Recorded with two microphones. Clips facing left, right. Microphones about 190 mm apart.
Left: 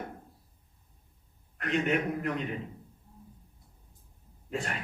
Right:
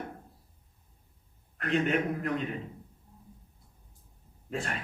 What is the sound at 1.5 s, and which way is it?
Speech, 40° right (ahead or behind).